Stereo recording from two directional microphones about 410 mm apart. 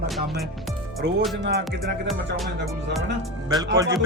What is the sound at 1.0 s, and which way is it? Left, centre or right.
Speech, right.